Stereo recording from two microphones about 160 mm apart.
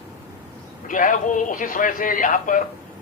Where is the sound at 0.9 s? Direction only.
55° left (ahead or behind).